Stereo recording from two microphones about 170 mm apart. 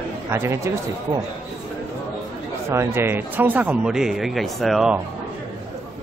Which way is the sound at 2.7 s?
15° right (ahead or behind).